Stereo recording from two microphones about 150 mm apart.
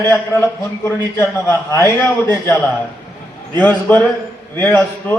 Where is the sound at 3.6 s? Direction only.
10° left (ahead or behind).